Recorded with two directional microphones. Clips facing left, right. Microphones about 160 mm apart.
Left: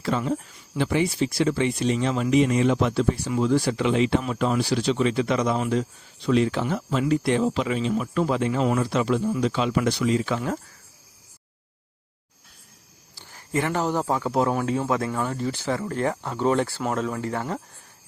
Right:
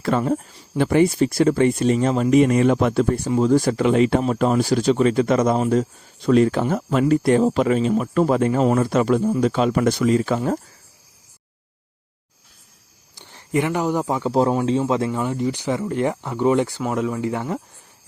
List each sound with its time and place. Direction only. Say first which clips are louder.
0.0 s speech: right 5 dB; 50° right (ahead or behind)
13.1 s speech: right 5 dB; 20° right (ahead or behind)